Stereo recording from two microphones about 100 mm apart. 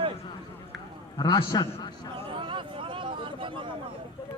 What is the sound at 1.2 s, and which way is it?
Speech, 45° left (ahead or behind).